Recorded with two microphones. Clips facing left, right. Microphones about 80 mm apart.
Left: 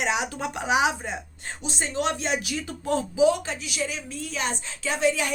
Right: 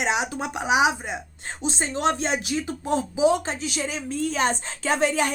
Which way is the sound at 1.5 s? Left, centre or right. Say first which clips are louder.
Right 4 dB; right.